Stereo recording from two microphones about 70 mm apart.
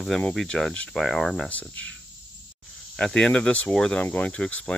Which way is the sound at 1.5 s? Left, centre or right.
Left.